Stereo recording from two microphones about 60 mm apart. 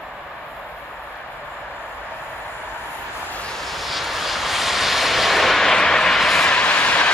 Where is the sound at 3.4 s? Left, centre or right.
Centre.